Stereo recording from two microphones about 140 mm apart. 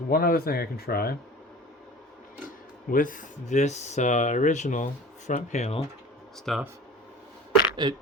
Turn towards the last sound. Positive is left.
turn(degrees=-30)  # may be behind; listen again after turning